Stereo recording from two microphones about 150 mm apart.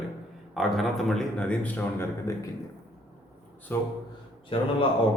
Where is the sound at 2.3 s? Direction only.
20° left (ahead or behind).